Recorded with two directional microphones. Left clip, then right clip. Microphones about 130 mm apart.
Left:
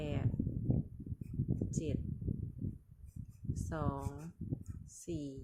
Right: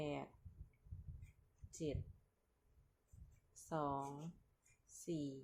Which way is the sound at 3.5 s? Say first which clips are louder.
Left 2 dB; 15° left (ahead or behind).